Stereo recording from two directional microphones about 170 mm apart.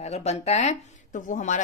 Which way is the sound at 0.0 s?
40° left (ahead or behind).